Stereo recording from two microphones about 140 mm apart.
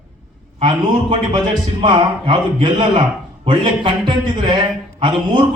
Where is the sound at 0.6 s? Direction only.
40° right (ahead or behind).